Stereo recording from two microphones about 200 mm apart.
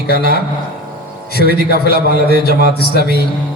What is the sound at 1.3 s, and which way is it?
Speech, 50° left (ahead or behind).